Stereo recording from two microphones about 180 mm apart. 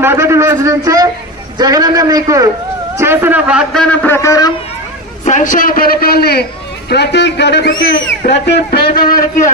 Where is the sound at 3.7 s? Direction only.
5° left (ahead or behind).